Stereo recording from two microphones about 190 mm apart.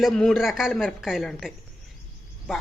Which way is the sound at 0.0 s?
Centre (ahead or behind).